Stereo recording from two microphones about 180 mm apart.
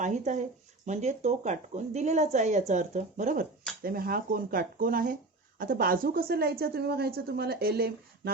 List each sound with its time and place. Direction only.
0.0 s speech: 40° right (ahead or behind)
3.8 s a woman's voice: 55° right (ahead or behind)